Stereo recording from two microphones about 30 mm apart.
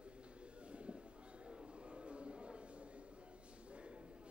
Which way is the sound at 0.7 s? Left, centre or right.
Right.